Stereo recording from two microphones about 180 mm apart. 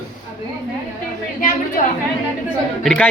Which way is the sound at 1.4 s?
50° left (ahead or behind).